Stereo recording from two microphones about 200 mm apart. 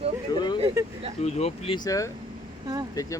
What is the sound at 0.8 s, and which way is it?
Speech, 15° right (ahead or behind).